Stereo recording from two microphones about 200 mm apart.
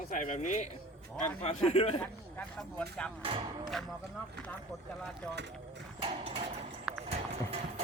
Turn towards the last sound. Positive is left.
turn(degrees=-5)  # may be behind; listen again after turning